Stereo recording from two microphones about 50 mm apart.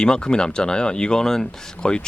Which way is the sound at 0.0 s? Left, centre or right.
Centre.